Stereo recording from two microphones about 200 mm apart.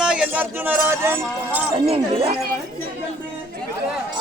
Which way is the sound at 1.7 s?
25° right (ahead or behind).